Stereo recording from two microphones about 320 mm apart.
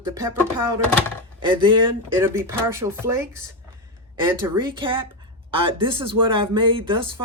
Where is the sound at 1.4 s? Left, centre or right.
Centre.